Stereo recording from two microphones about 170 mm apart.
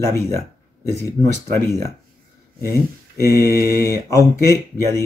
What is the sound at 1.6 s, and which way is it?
Speech, 15° left (ahead or behind).